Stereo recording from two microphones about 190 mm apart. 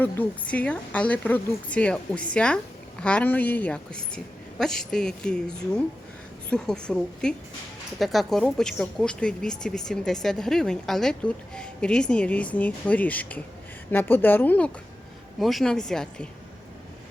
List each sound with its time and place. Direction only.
0.0 s speech: 10° left (ahead or behind)